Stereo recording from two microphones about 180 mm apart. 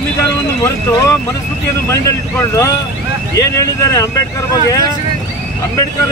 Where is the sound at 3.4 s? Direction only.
20° left (ahead or behind).